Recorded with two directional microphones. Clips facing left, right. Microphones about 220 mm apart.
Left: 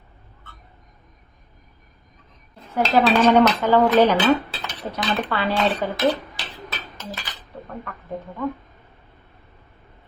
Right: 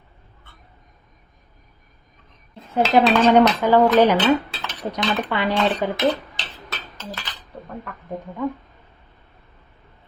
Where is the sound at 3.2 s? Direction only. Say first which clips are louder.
Right 1 dB; 10° right (ahead or behind).